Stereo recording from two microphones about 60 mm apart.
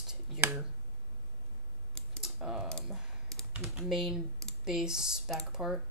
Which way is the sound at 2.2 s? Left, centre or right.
Centre.